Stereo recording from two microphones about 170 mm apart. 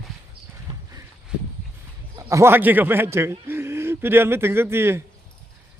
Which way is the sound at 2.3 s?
15° right (ahead or behind).